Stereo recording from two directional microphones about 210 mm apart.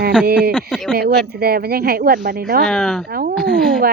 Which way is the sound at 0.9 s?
50° right (ahead or behind).